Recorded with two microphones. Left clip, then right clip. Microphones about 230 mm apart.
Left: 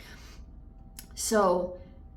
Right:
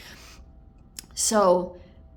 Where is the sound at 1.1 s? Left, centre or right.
Right.